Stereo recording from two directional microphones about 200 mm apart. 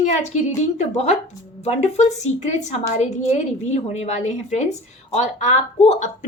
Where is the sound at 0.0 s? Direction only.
35° left (ahead or behind).